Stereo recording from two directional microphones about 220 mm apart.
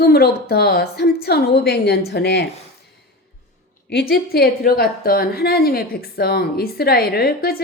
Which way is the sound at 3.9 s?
45° left (ahead or behind).